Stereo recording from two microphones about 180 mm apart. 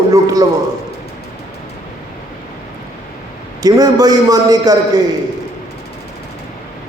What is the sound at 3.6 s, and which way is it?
A man's voice, 20° right (ahead or behind).